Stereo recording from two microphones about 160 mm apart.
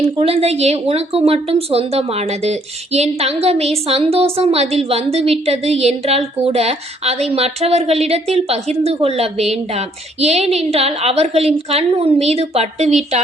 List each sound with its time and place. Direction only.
0.2 s a woman's voice: 40° right (ahead or behind)